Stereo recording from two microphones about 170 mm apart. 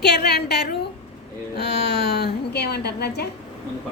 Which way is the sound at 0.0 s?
75° left (ahead or behind).